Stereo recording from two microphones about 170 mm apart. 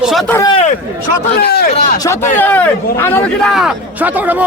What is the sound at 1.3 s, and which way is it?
Speech, 70° left (ahead or behind).